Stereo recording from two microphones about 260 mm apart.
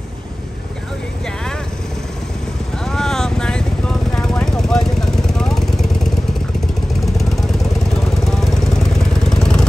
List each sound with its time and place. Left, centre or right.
2.8 s vehicle: centre
8.9 s vehicle: centre